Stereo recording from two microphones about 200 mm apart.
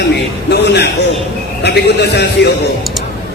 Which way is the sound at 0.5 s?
55° left (ahead or behind).